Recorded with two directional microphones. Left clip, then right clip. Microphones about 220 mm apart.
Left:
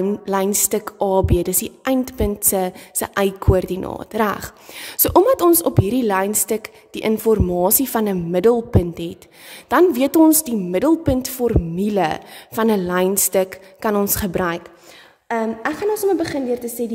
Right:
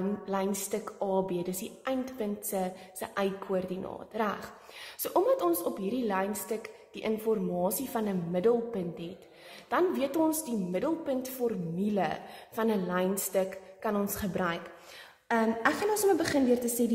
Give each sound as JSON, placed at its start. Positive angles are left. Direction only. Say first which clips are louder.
{"t": 0.2, "sound": "a woman's voice", "louder": "left 13 dB", "side_deg": 50}
{"t": 15.2, "sound": "a woman's voice", "louder": "left 6 dB", "side_deg": 35}